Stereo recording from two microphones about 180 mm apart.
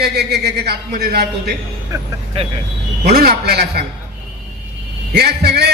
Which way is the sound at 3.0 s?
60° right (ahead or behind).